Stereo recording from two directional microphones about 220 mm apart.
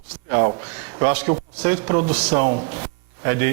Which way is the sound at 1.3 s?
20° right (ahead or behind).